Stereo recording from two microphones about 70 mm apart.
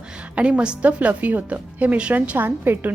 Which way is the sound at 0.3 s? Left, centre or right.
Centre.